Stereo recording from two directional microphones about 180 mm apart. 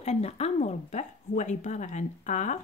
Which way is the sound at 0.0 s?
35° left (ahead or behind).